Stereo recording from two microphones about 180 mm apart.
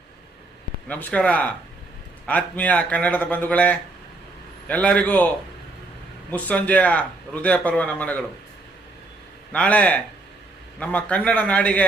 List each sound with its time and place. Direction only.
0.9 s a man's voice: 10° left (ahead or behind)
6.3 s a man's voice: 10° left (ahead or behind)
9.5 s a man's voice: 5° left (ahead or behind)